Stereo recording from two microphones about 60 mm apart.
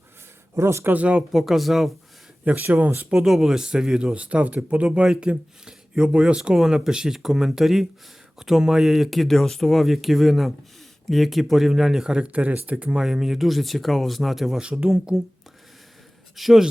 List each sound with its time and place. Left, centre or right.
0.5 s speech: right
0.9 s speech: centre
1.3 s speech: centre
2.4 s speech: right
3.1 s speech: centre
12.3 s speech: right; by 14.6 s centre
14.6 s speech: centre
15.1 s speech: centre
16.3 s speech: centre